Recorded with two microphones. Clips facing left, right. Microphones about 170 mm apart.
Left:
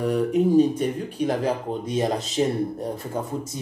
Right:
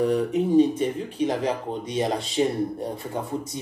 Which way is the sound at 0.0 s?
10° left (ahead or behind).